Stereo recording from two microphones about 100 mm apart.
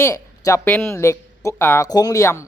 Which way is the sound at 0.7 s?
15° left (ahead or behind).